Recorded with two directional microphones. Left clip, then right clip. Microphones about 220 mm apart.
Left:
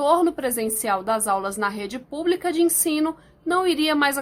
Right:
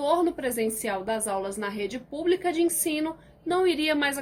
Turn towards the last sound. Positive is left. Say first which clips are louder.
# left 4 dB
turn(degrees=45)  # may be behind; listen again after turning